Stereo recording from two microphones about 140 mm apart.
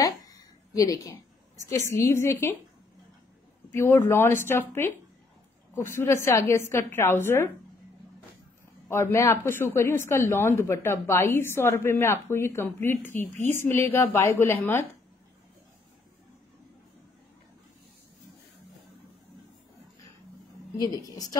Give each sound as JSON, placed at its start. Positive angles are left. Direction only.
{"t": 0.0, "sound": "a sound", "side_deg": 25}
{"t": 2.0, "sound": "a woman's voice", "side_deg": 20}
{"t": 3.7, "sound": "a woman's voice", "side_deg": 20}
{"t": 8.8, "sound": "a woman's voice", "side_deg": 20}
{"t": 20.7, "sound": "a woman's voice", "side_deg": 25}